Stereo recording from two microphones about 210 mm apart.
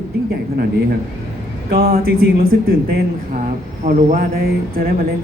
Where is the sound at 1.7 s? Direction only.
45° right (ahead or behind).